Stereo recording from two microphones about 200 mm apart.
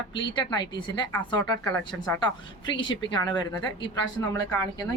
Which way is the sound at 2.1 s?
20° left (ahead or behind).